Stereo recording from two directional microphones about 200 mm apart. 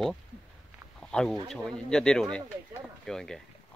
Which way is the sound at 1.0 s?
5° left (ahead or behind).